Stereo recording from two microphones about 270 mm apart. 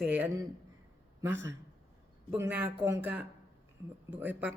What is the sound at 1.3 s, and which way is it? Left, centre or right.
Speech, right.